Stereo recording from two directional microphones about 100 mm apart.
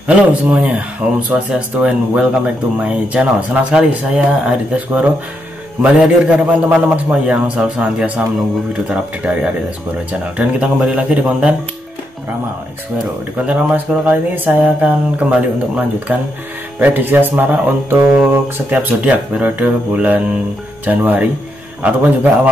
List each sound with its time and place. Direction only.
0.0 s speech: 15° right (ahead or behind)
13.5 s a man's voice: 15° right (ahead or behind)